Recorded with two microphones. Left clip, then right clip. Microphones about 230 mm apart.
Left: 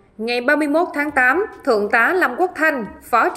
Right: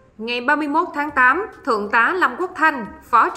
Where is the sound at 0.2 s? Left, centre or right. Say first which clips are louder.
Left 2 dB; centre.